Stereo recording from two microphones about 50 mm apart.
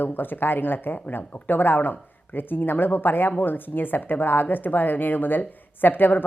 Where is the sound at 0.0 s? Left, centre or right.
Left.